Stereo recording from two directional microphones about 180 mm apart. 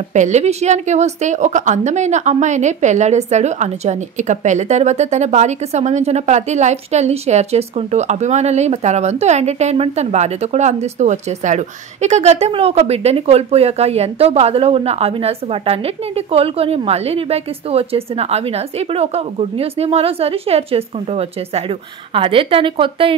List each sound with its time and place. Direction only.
0.1 s a woman's voice: 40° right (ahead or behind)